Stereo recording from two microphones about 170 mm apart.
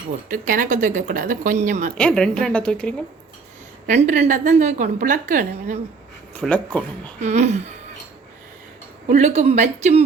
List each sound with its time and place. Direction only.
0.3 s a woman's voice: 55° right (ahead or behind)
2.0 s a woman's voice: 5° left (ahead or behind)
3.8 s a woman's voice: 45° right (ahead or behind)
6.4 s speech: 5° left (ahead or behind)
7.2 s speech: 40° right (ahead or behind)
9.0 s speech: 45° right (ahead or behind)